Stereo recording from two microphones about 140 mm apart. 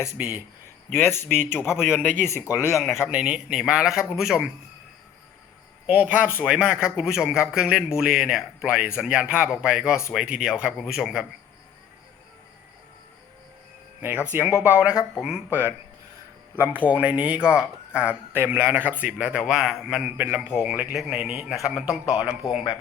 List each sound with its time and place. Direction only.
0.2 s speech: 10° right (ahead or behind)
0.9 s speech: 15° left (ahead or behind)
1.7 s a man's voice: 5° right (ahead or behind)
5.8 s a man's voice: 10° right (ahead or behind)
14.3 s a man's voice: 15° right (ahead or behind)